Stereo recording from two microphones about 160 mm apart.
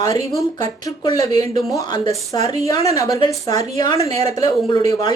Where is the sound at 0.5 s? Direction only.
25° left (ahead or behind).